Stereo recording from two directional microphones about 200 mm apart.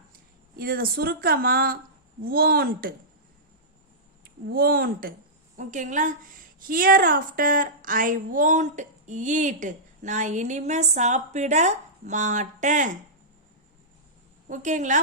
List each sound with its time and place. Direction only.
0.5 s speech: 45° right (ahead or behind)
4.2 s a woman's voice: 50° right (ahead or behind)
14.4 s a woman's voice: 40° right (ahead or behind)